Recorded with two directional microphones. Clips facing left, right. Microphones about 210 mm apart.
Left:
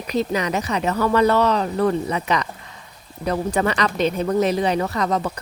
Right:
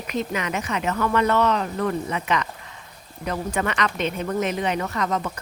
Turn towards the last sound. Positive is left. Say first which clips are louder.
# left 3 dB
turn(degrees=35)  # may be behind; listen again after turning